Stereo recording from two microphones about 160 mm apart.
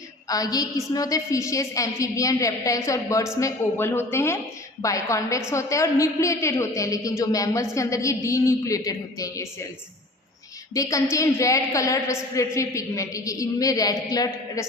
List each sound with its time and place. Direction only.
0.3 s a woman's voice: 25° left (ahead or behind)
10.8 s a woman's voice: 20° left (ahead or behind)